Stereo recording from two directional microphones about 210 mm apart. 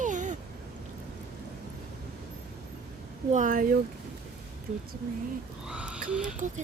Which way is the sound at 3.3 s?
40° right (ahead or behind).